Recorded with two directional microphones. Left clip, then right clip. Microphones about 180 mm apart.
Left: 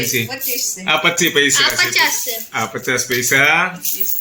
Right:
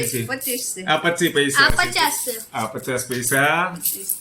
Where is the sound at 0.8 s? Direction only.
15° left (ahead or behind).